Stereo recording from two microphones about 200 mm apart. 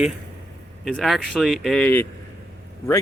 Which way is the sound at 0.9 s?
Centre (ahead or behind).